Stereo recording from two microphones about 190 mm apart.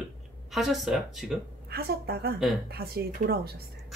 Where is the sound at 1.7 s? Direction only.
55° right (ahead or behind).